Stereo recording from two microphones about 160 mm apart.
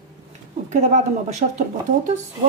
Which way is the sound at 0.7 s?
50° right (ahead or behind).